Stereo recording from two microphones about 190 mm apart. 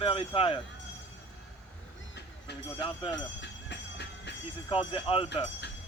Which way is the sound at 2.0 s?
65° left (ahead or behind).